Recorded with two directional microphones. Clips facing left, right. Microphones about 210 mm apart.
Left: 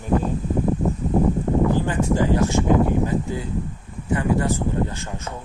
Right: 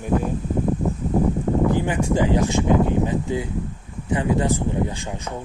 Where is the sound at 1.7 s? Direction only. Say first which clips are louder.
Even; 15° right (ahead or behind).